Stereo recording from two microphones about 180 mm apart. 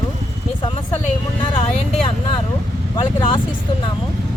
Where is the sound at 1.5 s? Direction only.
30° left (ahead or behind).